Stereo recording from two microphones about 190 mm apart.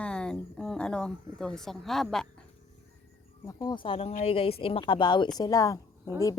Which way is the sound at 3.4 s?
25° left (ahead or behind).